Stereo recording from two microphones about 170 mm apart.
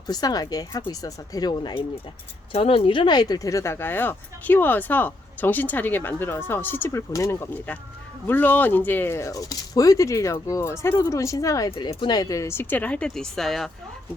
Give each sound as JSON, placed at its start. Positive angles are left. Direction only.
{"t": 0.1, "sound": "speech", "side_deg": 25}